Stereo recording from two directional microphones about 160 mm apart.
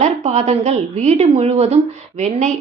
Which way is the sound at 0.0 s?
45° right (ahead or behind).